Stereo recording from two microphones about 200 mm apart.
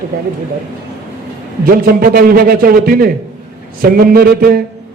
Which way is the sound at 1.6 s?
45° right (ahead or behind).